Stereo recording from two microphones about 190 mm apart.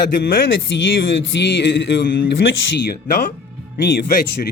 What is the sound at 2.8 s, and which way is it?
Speech, 55° left (ahead or behind).